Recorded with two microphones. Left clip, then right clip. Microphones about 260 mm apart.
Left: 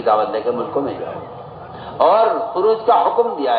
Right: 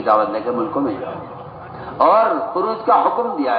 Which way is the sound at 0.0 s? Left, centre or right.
Left.